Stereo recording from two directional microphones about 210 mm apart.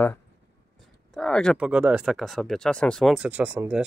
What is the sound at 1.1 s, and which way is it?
Speech, 5° left (ahead or behind).